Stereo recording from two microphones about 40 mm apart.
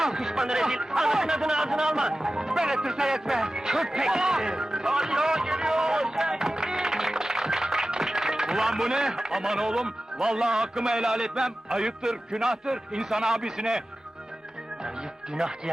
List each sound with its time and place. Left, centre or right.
0.0 s speech: centre
5.7 s a sound: centre
6.1 s run: centre
6.7 s music: centre
8.0 s speech: centre
14.8 s music: centre